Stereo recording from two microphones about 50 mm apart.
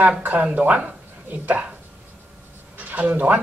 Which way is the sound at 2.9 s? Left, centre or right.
Right.